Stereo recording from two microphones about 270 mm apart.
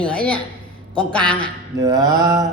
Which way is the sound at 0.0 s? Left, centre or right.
Centre.